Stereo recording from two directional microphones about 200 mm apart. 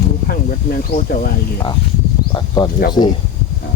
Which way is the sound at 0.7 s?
45° left (ahead or behind).